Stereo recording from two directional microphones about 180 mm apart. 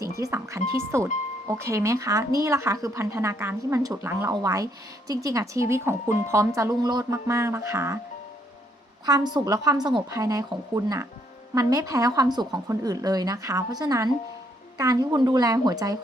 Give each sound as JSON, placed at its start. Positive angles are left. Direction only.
{"t": 0.2, "sound": "speech", "side_deg": -15}
{"t": 9.0, "sound": "speech", "side_deg": -20}